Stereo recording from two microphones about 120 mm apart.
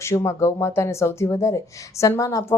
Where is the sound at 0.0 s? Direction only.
25° left (ahead or behind).